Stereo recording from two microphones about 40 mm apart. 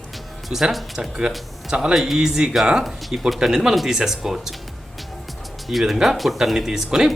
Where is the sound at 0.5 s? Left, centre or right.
Centre.